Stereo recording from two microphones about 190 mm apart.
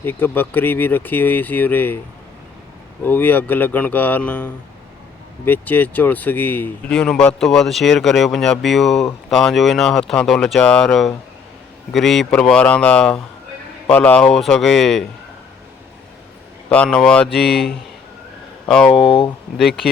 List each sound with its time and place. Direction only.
0.0 s speech: 10° left (ahead or behind)
3.0 s speech: 10° left (ahead or behind)
16.6 s speech: 5° left (ahead or behind)
19.0 s speech: 25° left (ahead or behind)
19.5 s speech: centre (ahead or behind)